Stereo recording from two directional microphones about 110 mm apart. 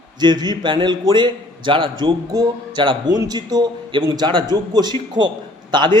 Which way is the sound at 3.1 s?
35° right (ahead or behind).